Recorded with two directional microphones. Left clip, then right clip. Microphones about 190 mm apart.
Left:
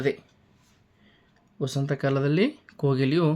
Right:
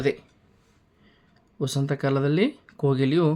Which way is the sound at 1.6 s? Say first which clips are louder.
Right 1 dB; 5° right (ahead or behind).